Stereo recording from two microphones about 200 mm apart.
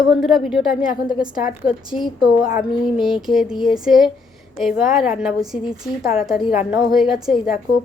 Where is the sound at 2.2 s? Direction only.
45° left (ahead or behind).